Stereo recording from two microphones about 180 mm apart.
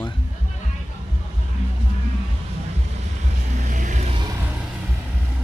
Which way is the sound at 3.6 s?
45° right (ahead or behind).